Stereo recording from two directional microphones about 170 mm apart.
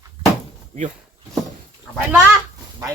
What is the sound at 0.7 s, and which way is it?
Speech, 45° right (ahead or behind).